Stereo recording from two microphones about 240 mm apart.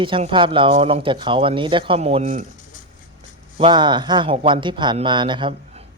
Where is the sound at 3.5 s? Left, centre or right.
Right.